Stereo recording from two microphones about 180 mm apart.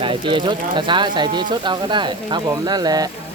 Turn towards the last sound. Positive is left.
turn(degrees=-20)  # may be behind; listen again after turning